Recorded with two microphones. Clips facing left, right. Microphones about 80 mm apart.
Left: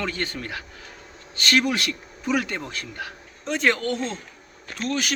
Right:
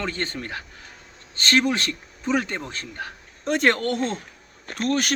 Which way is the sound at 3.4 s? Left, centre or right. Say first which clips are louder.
Right 2 dB; right.